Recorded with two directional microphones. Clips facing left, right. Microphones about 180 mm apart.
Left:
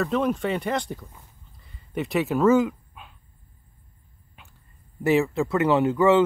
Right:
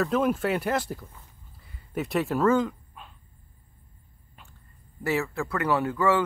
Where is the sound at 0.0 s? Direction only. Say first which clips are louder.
Even; centre (ahead or behind).